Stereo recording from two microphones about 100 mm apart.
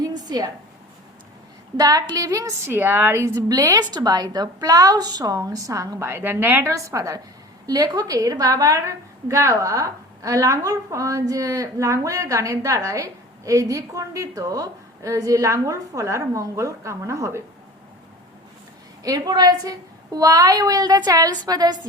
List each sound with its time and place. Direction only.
0.0 s a sound: 40° right (ahead or behind)
1.7 s a woman's voice: 40° right (ahead or behind)
2.6 s a woman's voice: 20° right (ahead or behind)
6.7 s a woman's voice: 35° right (ahead or behind)
19.0 s a woman's voice: 40° right (ahead or behind)